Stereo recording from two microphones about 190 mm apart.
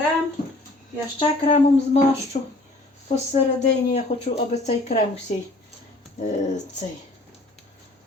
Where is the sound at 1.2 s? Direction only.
35° left (ahead or behind).